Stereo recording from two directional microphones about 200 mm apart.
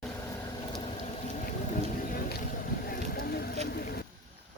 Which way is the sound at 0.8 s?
30° left (ahead or behind).